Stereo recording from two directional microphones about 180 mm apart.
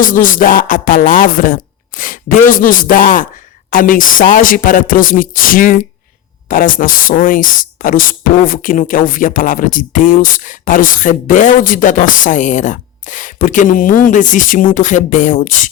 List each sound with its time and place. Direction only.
0.0 s speech: 50° left (ahead or behind)